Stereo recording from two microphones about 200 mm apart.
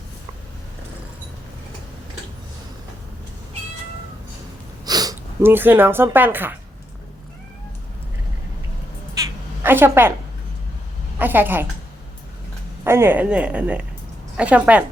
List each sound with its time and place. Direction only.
4.9 s speech: 20° right (ahead or behind)
9.6 s a woman's voice: 10° right (ahead or behind)
11.2 s speech: 10° right (ahead or behind)
12.8 s speech: 10° right (ahead or behind)